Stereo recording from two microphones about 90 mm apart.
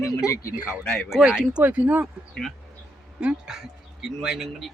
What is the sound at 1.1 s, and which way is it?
Speech, 5° right (ahead or behind).